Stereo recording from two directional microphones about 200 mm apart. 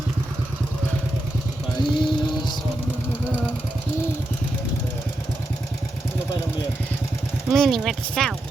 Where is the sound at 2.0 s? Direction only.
5° left (ahead or behind).